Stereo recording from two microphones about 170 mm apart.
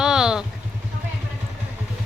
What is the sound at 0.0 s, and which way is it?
Vehicle, 5° right (ahead or behind).